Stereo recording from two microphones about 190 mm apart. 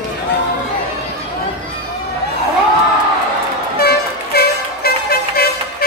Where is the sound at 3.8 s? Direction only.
55° left (ahead or behind).